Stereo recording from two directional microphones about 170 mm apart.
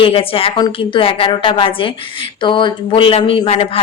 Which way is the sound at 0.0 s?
30° left (ahead or behind).